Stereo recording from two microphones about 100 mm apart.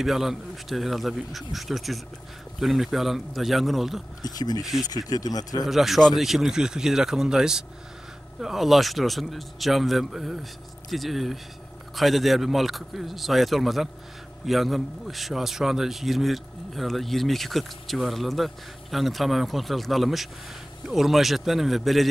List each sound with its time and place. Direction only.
0.0 s a man's voice: 5° right (ahead or behind)
4.2 s speech: 40° left (ahead or behind)
5.7 s a man's voice: centre (ahead or behind)